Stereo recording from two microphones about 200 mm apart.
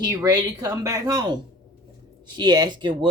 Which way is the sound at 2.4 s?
20° right (ahead or behind).